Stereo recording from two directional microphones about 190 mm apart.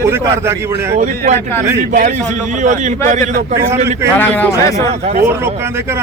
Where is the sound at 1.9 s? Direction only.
40° right (ahead or behind).